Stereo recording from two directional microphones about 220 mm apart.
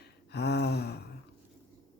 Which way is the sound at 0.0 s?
50° left (ahead or behind).